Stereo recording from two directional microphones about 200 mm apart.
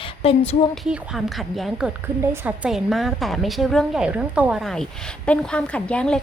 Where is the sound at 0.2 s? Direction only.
30° left (ahead or behind).